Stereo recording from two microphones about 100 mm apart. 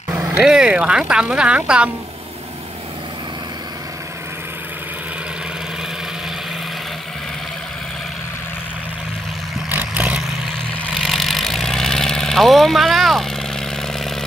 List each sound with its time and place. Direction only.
0.4 s speech: 5° right (ahead or behind)
9.7 s vehicle: 20° right (ahead or behind)
10.9 s vehicle: centre (ahead or behind)